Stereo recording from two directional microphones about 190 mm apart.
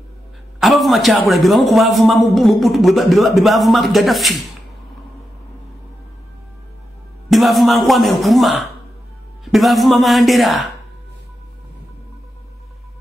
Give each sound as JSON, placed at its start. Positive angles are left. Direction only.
{"t": 0.6, "sound": "a man's voice", "side_deg": 0}
{"t": 7.2, "sound": "a man's voice", "side_deg": 0}